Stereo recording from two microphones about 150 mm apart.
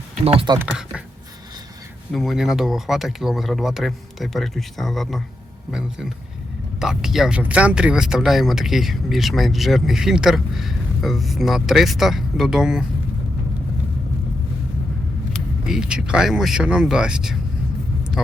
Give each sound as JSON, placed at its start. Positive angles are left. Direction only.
{"t": 0.3, "sound": "speech", "side_deg": -40}
{"t": 0.6, "sound": "speech", "side_deg": -5}
{"t": 2.1, "sound": "speech", "side_deg": 0}
{"t": 15.3, "sound": "speech", "side_deg": -5}